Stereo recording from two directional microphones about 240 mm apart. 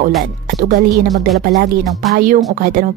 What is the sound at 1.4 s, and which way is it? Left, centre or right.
A woman's voice, right.